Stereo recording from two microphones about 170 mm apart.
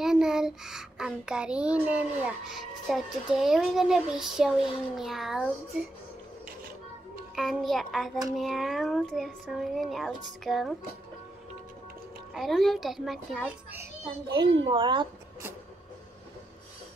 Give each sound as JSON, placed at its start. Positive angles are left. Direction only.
{"t": 0.0, "sound": "child singing", "side_deg": -5}
{"t": 7.3, "sound": "child singing", "side_deg": 0}
{"t": 12.4, "sound": "child singing", "side_deg": 0}
{"t": 14.5, "sound": "speech", "side_deg": -30}